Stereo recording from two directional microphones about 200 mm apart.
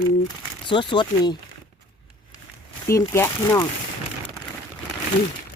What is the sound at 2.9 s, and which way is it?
Speech, 15° left (ahead or behind).